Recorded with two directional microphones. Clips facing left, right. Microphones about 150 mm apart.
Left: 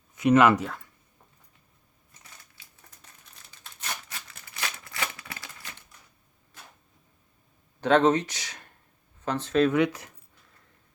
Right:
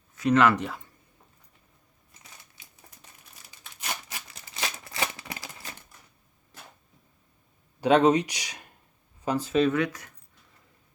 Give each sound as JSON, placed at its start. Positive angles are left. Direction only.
{"t": 0.3, "sound": "speech", "side_deg": 10}
{"t": 2.4, "sound": "crumpling", "side_deg": -20}
{"t": 3.3, "sound": "a sound", "side_deg": -10}
{"t": 7.8, "sound": "speech", "side_deg": -10}
{"t": 9.7, "sound": "speech", "side_deg": 25}